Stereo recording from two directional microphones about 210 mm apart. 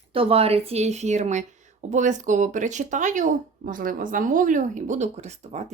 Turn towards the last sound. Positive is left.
turn(degrees=-30)  # may be behind; listen again after turning